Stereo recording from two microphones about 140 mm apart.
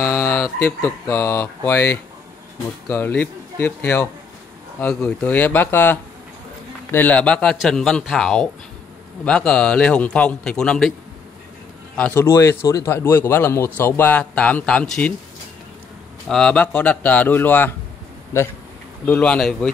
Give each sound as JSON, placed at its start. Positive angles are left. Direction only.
{"t": 0.0, "sound": "a man's voice", "side_deg": 20}
{"t": 12.0, "sound": "a man's voice", "side_deg": 15}
{"t": 16.3, "sound": "a man's voice", "side_deg": 5}
{"t": 19.0, "sound": "speech", "side_deg": 10}